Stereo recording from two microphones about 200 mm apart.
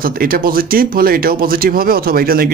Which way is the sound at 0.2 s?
45° right (ahead or behind).